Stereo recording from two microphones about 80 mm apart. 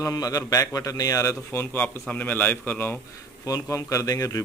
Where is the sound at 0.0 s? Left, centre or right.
Left.